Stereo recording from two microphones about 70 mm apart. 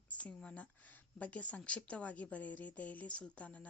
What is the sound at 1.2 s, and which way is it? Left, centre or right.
A woman's voice, left.